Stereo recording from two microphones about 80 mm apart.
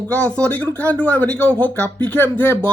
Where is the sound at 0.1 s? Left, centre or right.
Centre.